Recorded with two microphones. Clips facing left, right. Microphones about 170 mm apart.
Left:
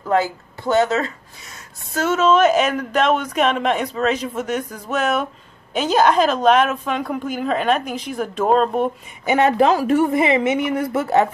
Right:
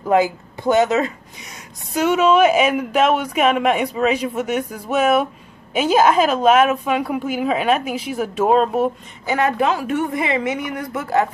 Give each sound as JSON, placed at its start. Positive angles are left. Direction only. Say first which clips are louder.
{"t": 0.0, "sound": "a man's voice", "louder": "right 3 dB", "side_deg": -15}
{"t": 9.2, "sound": "speech", "louder": "left 3 dB", "side_deg": 25}
{"t": 10.1, "sound": "a woman's voice", "louder": "left 4 dB", "side_deg": 20}